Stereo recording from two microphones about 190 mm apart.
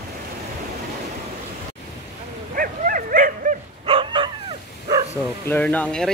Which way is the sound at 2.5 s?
45° right (ahead or behind).